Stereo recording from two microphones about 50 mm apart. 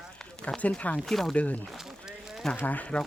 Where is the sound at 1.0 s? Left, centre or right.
Centre.